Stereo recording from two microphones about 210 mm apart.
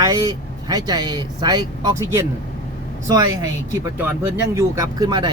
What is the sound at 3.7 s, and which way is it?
Speech, 10° right (ahead or behind).